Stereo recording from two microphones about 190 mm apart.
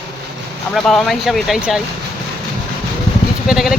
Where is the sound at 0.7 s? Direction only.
Centre (ahead or behind).